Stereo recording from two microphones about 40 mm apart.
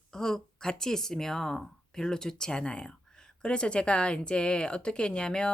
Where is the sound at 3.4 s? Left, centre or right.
Left.